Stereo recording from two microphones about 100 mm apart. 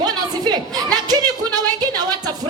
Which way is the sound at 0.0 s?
45° right (ahead or behind).